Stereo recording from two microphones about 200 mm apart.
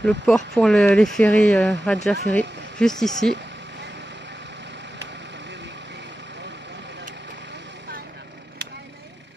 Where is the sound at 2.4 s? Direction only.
60° right (ahead or behind).